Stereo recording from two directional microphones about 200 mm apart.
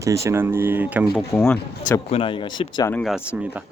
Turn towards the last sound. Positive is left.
turn(degrees=5)  # may be behind; listen again after turning